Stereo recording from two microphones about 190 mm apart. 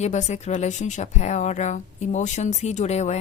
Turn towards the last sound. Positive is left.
turn(degrees=35)  # may be behind; listen again after turning